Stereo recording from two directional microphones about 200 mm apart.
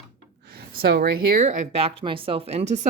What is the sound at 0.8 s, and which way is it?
Speech, 50° right (ahead or behind).